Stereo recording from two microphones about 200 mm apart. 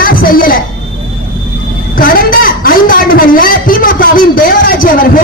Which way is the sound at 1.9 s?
45° left (ahead or behind).